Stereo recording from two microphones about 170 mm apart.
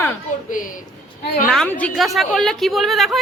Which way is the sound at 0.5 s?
50° left (ahead or behind).